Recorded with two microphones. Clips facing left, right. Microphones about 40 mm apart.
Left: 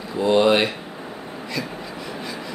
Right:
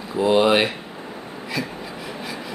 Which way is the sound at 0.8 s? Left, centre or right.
Centre.